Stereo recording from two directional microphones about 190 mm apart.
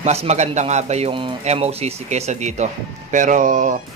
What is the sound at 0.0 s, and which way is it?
Speech, 35° right (ahead or behind).